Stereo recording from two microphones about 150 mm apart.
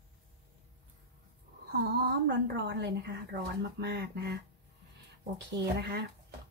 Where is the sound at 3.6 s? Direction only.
90° right.